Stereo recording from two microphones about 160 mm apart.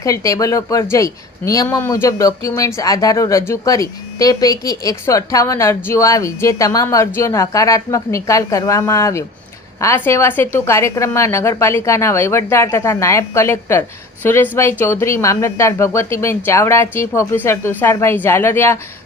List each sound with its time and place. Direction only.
0.0 s speech: 20° left (ahead or behind)